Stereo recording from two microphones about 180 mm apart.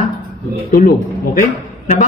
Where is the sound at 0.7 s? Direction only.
50° left (ahead or behind).